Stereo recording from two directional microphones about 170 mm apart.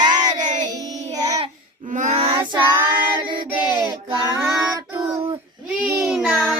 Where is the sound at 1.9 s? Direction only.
45° right (ahead or behind).